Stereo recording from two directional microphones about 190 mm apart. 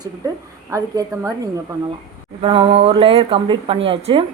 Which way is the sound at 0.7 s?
15° right (ahead or behind).